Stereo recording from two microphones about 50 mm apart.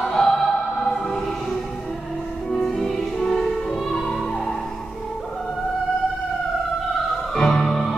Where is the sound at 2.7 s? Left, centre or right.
Centre.